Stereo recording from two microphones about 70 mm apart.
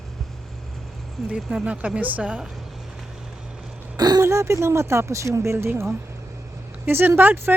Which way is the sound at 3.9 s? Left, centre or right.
Right.